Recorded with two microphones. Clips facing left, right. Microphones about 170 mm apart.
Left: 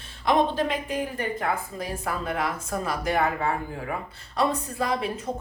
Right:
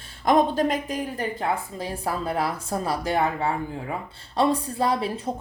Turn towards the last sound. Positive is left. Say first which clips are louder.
# right 3 dB
turn(degrees=-30)  # may be behind; listen again after turning